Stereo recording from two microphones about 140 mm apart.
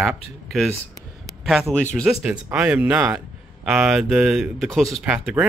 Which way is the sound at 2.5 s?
10° right (ahead or behind).